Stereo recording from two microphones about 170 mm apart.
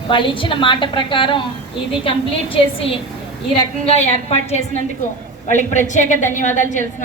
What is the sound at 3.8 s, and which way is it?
A woman's voice, 35° left (ahead or behind).